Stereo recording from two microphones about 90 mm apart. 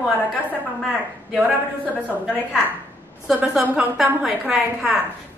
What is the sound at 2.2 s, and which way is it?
Speech, 10° left (ahead or behind).